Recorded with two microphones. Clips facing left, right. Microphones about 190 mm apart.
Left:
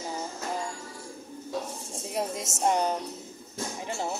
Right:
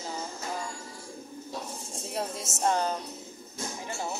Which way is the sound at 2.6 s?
15° left (ahead or behind).